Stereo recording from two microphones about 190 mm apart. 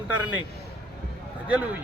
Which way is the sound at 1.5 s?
5° right (ahead or behind).